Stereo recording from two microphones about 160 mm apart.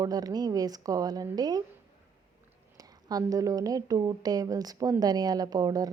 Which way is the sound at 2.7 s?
25° right (ahead or behind).